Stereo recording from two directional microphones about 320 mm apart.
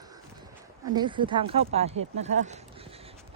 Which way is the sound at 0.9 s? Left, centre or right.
Centre.